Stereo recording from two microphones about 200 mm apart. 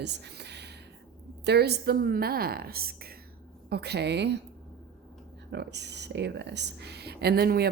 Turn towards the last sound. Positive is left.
turn(degrees=-50)  # may be behind; listen again after turning